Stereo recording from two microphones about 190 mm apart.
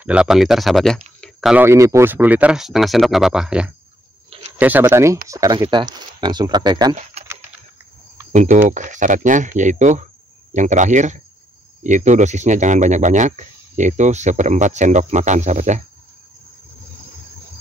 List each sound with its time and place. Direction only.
0.0 s speech: 5° right (ahead or behind)
1.6 s speech: 15° right (ahead or behind)
8.3 s speech: 40° right (ahead or behind)